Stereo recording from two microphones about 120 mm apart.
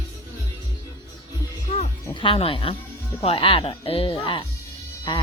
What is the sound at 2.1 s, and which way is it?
Speech, 45° left (ahead or behind).